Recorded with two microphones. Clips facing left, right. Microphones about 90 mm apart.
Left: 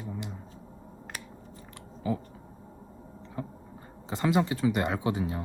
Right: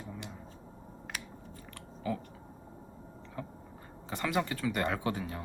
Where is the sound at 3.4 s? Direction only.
20° left (ahead or behind).